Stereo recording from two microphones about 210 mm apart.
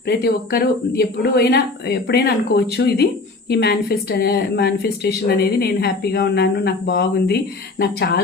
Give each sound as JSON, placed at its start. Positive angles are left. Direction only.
{"t": 0.1, "sound": "a woman's voice", "side_deg": 50}